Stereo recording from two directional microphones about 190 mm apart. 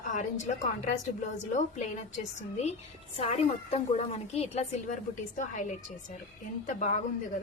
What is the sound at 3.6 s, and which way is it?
A woman's voice, 35° left (ahead or behind).